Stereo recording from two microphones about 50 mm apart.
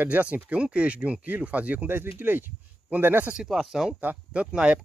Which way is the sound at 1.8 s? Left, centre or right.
Right.